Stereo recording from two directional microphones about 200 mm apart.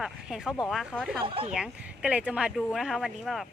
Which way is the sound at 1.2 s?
25° right (ahead or behind).